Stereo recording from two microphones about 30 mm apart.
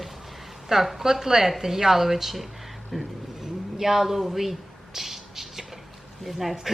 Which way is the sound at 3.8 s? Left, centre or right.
Centre.